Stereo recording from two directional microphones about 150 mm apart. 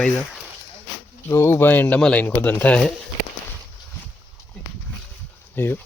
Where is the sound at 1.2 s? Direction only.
15° left (ahead or behind).